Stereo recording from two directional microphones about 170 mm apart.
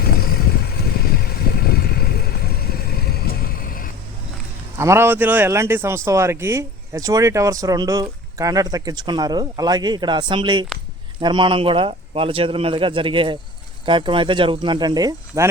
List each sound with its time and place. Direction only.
0.0 s vehicle: 60° left (ahead or behind)
4.8 s speech: 15° right (ahead or behind)